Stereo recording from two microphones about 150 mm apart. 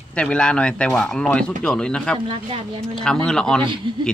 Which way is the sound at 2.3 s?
40° right (ahead or behind).